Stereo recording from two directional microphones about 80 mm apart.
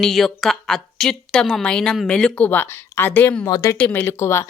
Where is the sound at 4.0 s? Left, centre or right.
Left.